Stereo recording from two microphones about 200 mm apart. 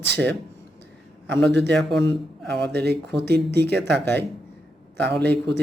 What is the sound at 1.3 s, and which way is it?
Speech, 60° right (ahead or behind).